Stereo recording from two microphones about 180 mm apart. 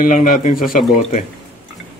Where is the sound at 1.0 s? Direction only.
40° left (ahead or behind).